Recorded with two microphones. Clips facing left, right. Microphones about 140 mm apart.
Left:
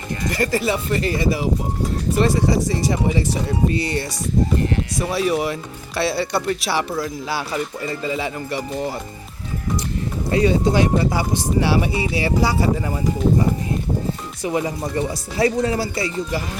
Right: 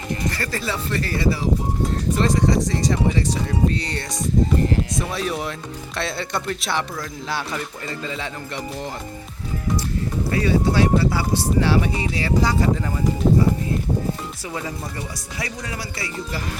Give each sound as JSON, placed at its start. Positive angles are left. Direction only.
{"t": 0.3, "sound": "speech", "side_deg": 15}
{"t": 10.2, "sound": "speech", "side_deg": 20}
{"t": 14.4, "sound": "speech", "side_deg": 20}